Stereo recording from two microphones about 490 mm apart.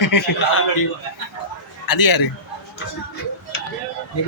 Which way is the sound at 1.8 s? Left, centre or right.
Left.